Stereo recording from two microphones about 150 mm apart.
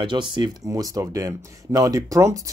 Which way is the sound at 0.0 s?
30° right (ahead or behind).